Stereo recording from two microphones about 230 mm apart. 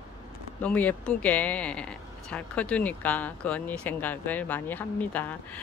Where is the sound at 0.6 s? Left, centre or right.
Centre.